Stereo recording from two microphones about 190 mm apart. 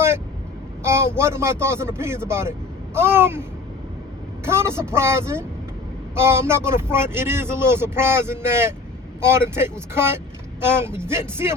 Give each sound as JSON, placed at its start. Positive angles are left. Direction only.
{"t": 0.8, "sound": "speech", "side_deg": -15}
{"t": 4.4, "sound": "speech", "side_deg": -15}